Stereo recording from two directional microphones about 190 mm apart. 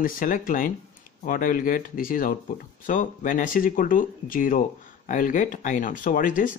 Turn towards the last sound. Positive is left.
turn(degrees=45)  # may be behind; listen again after turning